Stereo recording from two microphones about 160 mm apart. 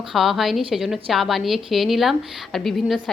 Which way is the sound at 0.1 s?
Centre (ahead or behind).